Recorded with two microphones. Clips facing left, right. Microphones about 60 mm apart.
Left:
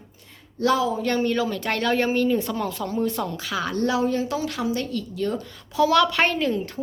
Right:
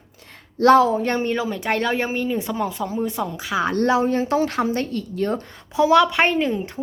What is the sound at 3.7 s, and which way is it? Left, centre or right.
A woman's voice, right.